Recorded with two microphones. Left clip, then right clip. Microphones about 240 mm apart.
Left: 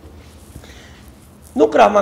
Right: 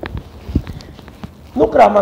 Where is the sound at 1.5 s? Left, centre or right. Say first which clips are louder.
Right 1 dB; left.